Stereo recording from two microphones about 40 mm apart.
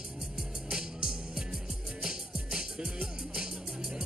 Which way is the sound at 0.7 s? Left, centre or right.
Centre.